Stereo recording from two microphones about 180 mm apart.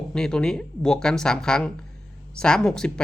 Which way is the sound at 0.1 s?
5° left (ahead or behind).